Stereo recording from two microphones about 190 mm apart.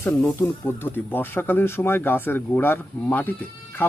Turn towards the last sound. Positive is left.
turn(degrees=10)  # may be behind; listen again after turning